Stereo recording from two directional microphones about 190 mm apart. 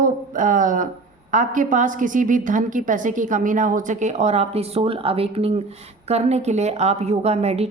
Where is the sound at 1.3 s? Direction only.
45° right (ahead or behind).